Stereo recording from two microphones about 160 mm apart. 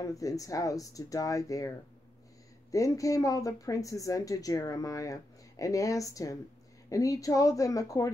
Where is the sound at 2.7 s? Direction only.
20° left (ahead or behind).